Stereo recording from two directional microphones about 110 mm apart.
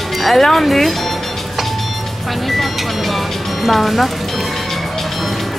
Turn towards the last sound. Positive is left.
turn(degrees=0)  # may be behind; listen again after turning